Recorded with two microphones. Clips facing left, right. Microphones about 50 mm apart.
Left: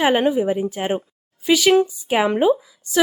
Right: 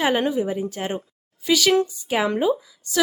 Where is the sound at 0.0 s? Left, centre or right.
Centre.